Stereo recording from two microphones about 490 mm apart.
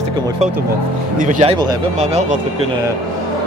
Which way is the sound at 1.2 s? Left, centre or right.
Centre.